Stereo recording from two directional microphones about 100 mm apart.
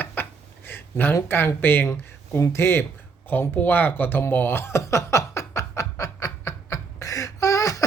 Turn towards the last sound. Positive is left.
turn(degrees=35)  # may be behind; listen again after turning